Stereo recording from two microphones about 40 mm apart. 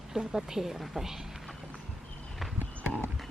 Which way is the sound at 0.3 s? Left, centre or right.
Centre.